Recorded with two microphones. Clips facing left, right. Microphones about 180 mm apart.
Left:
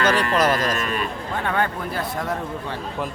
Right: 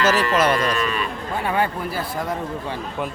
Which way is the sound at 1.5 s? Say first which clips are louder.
Right 2 dB; 10° right (ahead or behind).